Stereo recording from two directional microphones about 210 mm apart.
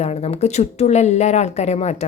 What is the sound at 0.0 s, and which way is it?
Speech, 30° left (ahead or behind).